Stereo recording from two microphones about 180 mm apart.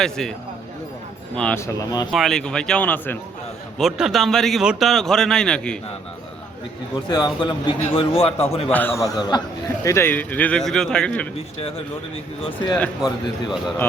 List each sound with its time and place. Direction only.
0.0 s speech: centre (ahead or behind)
1.4 s speech: 5° left (ahead or behind)
1.6 s a man's voice: 20° left (ahead or behind)
2.1 s speech: centre (ahead or behind)
3.8 s speech: centre (ahead or behind)
6.9 s a man's voice: 20° left (ahead or behind)
8.7 s speech: 10° left (ahead or behind)
12.4 s a man's voice: 30° left (ahead or behind)
12.7 s speech: 5° left (ahead or behind)